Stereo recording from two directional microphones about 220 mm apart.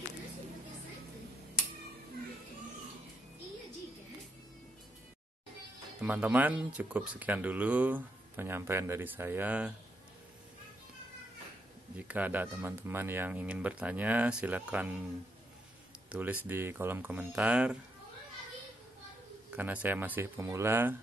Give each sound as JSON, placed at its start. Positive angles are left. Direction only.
{"t": 5.9, "sound": "speech", "side_deg": -5}
{"t": 12.0, "sound": "speech", "side_deg": -5}
{"t": 16.1, "sound": "speech", "side_deg": -5}
{"t": 19.5, "sound": "speech", "side_deg": -5}